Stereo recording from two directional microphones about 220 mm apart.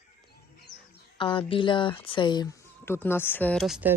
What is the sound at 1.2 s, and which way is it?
Speech, 20° left (ahead or behind).